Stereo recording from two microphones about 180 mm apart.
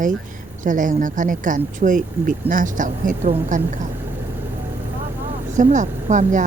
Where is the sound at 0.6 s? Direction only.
45° right (ahead or behind).